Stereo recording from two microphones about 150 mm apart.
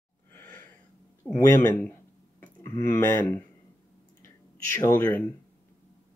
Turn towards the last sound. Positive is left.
turn(degrees=15)  # may be behind; listen again after turning